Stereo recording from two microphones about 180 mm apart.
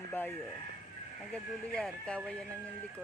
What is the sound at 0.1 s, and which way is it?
Speech, 10° left (ahead or behind).